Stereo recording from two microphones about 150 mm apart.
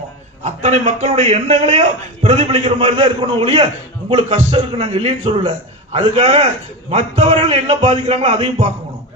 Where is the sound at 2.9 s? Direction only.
30° right (ahead or behind).